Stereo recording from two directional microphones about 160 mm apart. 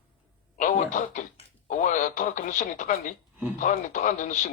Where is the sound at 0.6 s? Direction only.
55° left (ahead or behind).